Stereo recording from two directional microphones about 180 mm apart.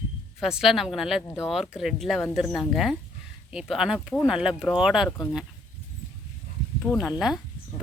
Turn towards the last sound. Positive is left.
turn(degrees=0)  # may be behind; listen again after turning